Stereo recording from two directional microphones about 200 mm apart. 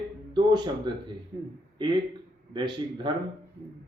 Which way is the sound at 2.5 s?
25° right (ahead or behind).